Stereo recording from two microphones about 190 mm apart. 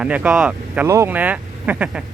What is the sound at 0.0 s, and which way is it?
Speech, 5° right (ahead or behind).